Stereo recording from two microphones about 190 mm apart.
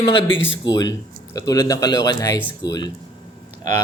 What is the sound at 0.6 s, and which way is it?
A man's voice, 20° left (ahead or behind).